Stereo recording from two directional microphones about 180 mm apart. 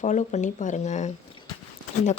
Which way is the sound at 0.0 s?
40° left (ahead or behind).